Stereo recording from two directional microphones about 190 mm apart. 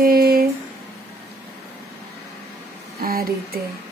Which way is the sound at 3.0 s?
50° right (ahead or behind).